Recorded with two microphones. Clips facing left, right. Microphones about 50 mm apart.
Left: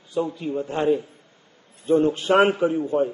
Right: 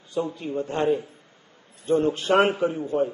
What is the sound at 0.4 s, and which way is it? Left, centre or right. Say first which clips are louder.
Speech: left 1 dB; centre.